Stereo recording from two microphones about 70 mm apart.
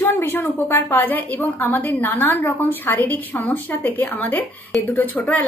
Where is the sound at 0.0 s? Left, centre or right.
Left.